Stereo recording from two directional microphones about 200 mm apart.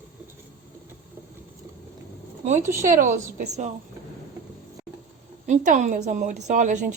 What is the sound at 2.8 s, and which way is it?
Speech, 40° right (ahead or behind).